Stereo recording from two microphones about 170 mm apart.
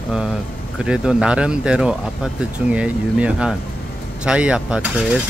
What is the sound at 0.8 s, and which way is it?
Speech, 5° right (ahead or behind).